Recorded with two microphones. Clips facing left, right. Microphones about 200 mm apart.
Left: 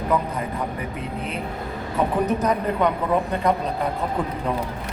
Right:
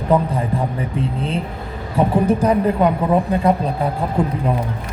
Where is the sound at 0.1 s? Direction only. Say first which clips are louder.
Right 8 dB; 30° right (ahead or behind).